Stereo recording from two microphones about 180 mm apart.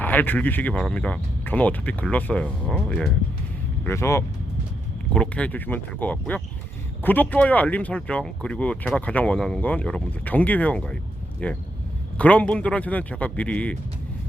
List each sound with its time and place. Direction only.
0.0 s speech: 10° left (ahead or behind)
3.8 s speech: 15° left (ahead or behind)